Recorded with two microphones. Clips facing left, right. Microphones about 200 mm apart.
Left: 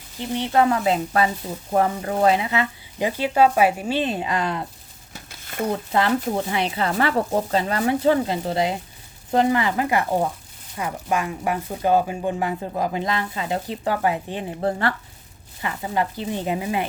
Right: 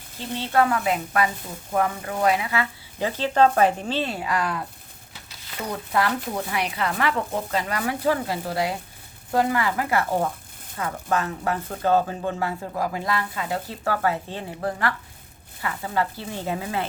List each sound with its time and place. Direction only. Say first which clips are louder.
0.2 s speech: left 2 dB; 15° left (ahead or behind)
5.3 s a sound: left 7 dB; 50° left (ahead or behind)
5.6 s speech: left 3 dB; 25° left (ahead or behind)